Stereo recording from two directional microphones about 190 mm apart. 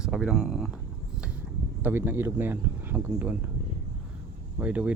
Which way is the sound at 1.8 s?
10° right (ahead or behind).